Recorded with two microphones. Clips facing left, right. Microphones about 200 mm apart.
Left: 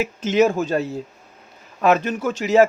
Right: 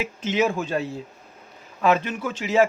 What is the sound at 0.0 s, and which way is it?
A man's voice, 40° left (ahead or behind).